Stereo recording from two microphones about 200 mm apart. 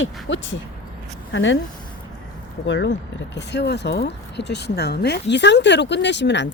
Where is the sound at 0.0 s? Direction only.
70° left (ahead or behind).